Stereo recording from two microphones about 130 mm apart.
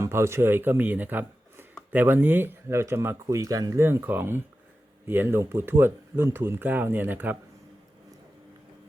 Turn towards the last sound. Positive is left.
turn(degrees=-15)  # may be behind; listen again after turning